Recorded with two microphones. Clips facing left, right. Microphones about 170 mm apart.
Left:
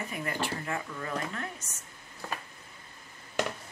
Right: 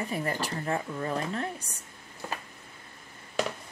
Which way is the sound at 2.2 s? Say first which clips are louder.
Right 1 dB; 15° right (ahead or behind).